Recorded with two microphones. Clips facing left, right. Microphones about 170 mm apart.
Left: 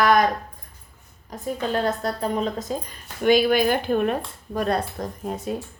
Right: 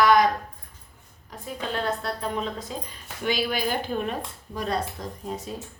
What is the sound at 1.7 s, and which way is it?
A woman's voice, 40° left (ahead or behind).